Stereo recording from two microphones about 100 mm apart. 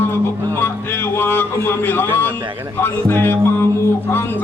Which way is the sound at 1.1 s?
20° left (ahead or behind).